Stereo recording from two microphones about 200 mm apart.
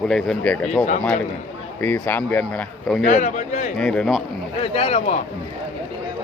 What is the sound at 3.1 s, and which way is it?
Speech, 40° left (ahead or behind).